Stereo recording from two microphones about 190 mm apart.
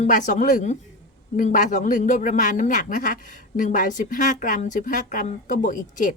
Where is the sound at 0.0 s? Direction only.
40° left (ahead or behind).